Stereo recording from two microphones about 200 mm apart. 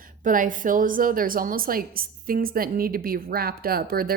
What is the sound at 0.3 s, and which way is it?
A woman's voice, 40° right (ahead or behind).